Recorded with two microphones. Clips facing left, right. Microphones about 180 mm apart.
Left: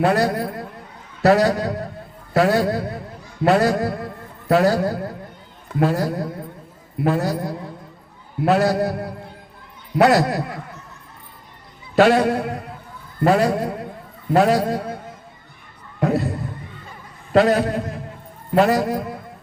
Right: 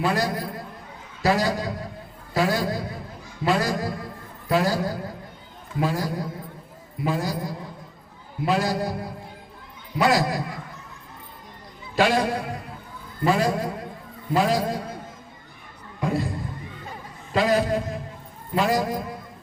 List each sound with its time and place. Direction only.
0.0 s a man's voice: 65° left (ahead or behind)
11.9 s a man's voice: 60° left (ahead or behind)
13.6 s a sound: 60° left (ahead or behind)
14.3 s a man's voice: 60° left (ahead or behind)
16.0 s a sound: 65° left (ahead or behind)
17.3 s a man's voice: 60° left (ahead or behind)